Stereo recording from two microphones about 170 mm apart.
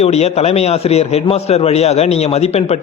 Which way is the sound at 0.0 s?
40° left (ahead or behind).